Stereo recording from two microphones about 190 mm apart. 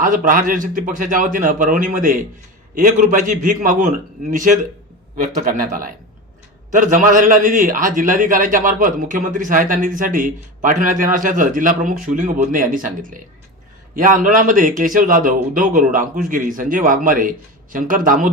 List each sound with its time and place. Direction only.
0.0 s a man's voice: 45° right (ahead or behind)